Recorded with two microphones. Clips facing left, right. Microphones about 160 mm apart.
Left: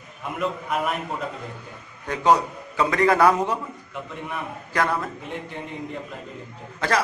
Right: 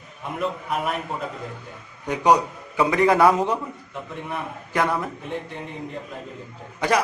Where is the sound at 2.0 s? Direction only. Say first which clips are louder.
Right 1 dB; 15° right (ahead or behind).